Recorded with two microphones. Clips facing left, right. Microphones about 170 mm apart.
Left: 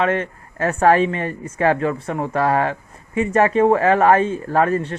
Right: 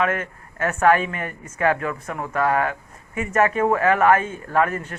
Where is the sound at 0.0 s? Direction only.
30° left (ahead or behind).